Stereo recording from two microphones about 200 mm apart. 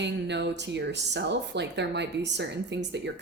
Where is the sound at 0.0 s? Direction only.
60° right (ahead or behind).